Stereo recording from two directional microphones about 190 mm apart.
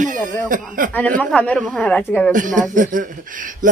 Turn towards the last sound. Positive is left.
turn(degrees=-45)  # may be behind; listen again after turning